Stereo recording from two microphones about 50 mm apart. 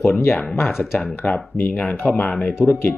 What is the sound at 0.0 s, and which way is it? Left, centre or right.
Speech, left.